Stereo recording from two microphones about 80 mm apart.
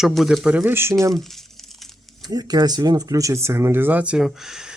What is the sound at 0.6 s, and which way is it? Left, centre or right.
Speech, right.